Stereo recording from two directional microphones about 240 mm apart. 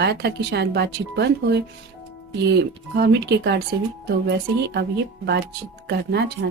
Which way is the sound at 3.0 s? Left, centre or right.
Right.